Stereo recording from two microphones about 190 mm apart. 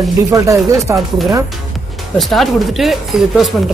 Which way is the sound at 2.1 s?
Centre (ahead or behind).